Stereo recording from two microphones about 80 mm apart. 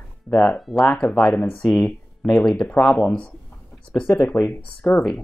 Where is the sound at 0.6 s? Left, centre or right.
Centre.